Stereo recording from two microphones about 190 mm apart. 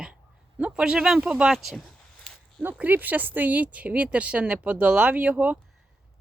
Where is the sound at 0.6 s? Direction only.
5° right (ahead or behind).